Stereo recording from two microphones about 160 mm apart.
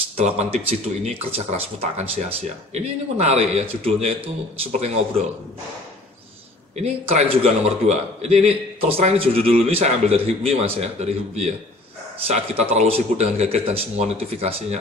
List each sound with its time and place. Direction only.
0.2 s speech: 40° right (ahead or behind)
6.8 s a man's voice: 40° right (ahead or behind)